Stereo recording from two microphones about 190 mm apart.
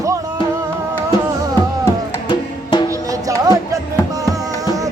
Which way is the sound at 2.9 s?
15° right (ahead or behind).